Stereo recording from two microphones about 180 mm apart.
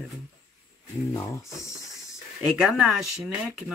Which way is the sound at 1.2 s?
15° left (ahead or behind).